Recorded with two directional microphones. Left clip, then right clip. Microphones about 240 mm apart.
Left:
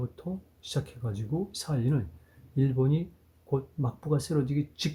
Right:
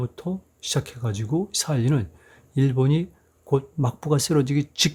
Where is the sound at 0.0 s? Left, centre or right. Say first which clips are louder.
Right 7 dB; right.